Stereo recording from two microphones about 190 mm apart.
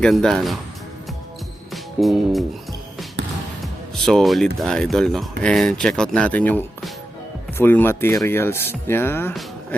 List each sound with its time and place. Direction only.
0.0 s speech: centre (ahead or behind)
1.7 s music: centre (ahead or behind)
3.2 s music: 65° right (ahead or behind)
3.6 s speech: centre (ahead or behind)